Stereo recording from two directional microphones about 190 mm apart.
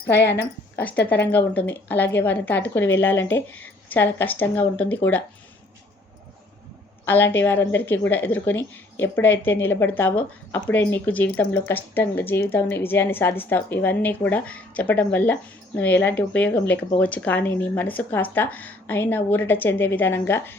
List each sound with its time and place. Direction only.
0.1 s a woman's voice: 60° left (ahead or behind)
0.8 s speech: 10° left (ahead or behind)
7.0 s speech: 10° left (ahead or behind)